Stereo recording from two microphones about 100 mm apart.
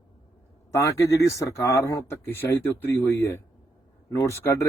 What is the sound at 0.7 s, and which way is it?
A man's voice, 30° left (ahead or behind).